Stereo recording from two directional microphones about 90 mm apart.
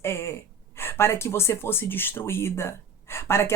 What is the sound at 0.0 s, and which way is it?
Gasp, 30° left (ahead or behind).